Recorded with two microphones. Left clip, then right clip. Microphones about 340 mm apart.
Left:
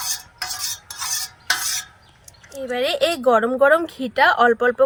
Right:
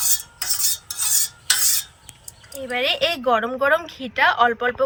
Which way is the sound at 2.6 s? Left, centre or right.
Centre.